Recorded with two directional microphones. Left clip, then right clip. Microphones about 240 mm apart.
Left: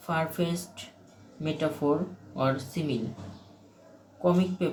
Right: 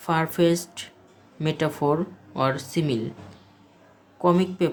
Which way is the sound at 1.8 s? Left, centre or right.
Right.